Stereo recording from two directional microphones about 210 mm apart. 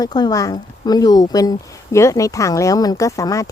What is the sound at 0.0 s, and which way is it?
Speech, 20° left (ahead or behind).